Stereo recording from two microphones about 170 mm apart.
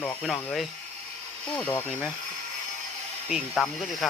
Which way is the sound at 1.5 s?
10° left (ahead or behind).